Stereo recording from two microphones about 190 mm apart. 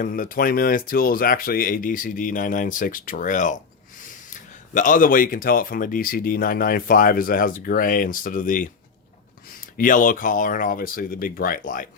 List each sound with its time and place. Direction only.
0.0 s speech: 45° left (ahead or behind)
9.7 s speech: 45° left (ahead or behind)